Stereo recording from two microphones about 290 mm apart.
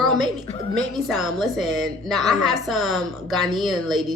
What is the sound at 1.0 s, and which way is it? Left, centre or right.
A woman's voice, centre.